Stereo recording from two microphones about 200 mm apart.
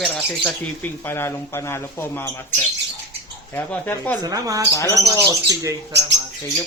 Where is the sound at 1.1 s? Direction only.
10° left (ahead or behind).